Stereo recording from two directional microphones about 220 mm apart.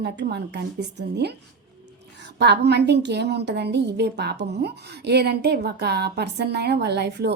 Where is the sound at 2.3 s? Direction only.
50° right (ahead or behind).